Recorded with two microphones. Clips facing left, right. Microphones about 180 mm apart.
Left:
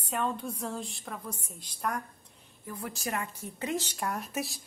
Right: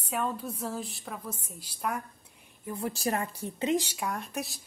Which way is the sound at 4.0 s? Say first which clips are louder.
Even; centre (ahead or behind).